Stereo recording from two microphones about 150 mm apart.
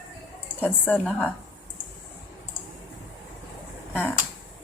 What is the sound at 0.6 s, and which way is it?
Speech, 10° left (ahead or behind).